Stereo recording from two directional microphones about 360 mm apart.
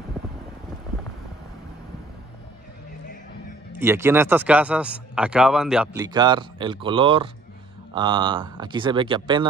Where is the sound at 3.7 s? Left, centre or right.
Centre.